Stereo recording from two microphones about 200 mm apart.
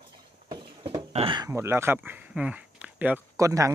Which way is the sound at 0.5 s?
25° right (ahead or behind).